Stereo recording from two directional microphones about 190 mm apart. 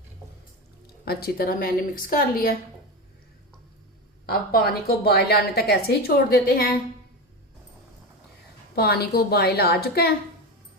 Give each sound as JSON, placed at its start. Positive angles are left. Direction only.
{"t": 1.0, "sound": "a woman's voice", "side_deg": 55}
{"t": 4.3, "sound": "a woman's voice", "side_deg": 55}
{"t": 8.7, "sound": "a woman's voice", "side_deg": 55}